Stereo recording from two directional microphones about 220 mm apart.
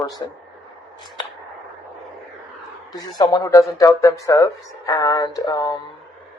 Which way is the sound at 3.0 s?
15° left (ahead or behind).